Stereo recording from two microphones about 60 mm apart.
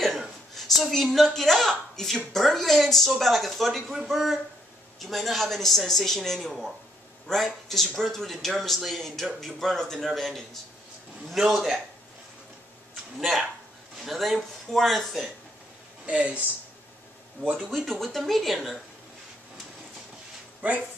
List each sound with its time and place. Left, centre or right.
0.6 s speech: centre
14.0 s speech: centre
16.1 s speech: centre
17.6 s speech: centre